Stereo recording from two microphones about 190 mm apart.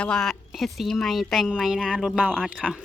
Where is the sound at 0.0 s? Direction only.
5° left (ahead or behind).